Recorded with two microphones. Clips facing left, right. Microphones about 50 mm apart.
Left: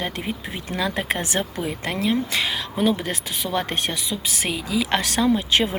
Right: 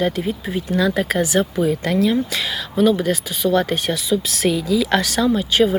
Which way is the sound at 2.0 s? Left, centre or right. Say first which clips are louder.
Right 3 dB; left.